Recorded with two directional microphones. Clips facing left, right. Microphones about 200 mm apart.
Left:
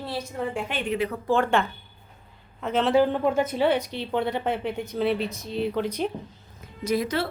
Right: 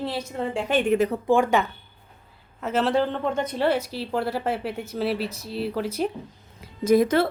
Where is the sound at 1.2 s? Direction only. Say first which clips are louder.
Right 2 dB; 10° right (ahead or behind).